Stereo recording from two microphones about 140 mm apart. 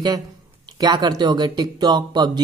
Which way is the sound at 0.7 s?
30° right (ahead or behind).